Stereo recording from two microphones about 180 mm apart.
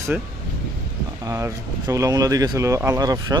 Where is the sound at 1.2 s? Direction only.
15° right (ahead or behind).